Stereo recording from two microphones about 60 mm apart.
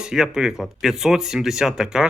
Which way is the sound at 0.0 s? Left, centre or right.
Centre.